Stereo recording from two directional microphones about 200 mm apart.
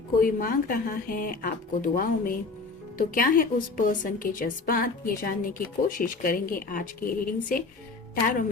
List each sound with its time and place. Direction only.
0.2 s a woman's voice: 45° left (ahead or behind)